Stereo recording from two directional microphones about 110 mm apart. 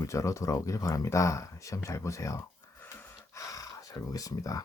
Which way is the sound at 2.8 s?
20° left (ahead or behind).